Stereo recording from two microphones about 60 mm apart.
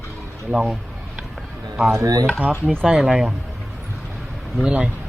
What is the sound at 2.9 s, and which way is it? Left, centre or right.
Speech, centre.